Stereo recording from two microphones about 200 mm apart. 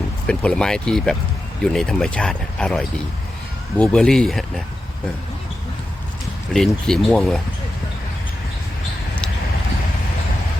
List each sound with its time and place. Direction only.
0.3 s speech: 5° left (ahead or behind)
6.5 s speech: centre (ahead or behind)